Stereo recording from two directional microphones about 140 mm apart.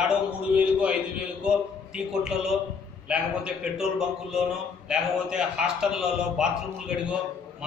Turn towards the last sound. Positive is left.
turn(degrees=-5)  # may be behind; listen again after turning